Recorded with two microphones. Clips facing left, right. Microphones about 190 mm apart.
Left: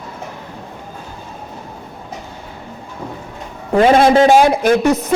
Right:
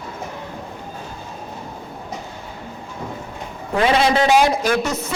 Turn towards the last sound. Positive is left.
turn(degrees=55)  # may be behind; listen again after turning